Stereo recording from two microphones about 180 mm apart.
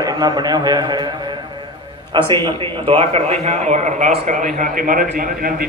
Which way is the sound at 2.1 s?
25° right (ahead or behind).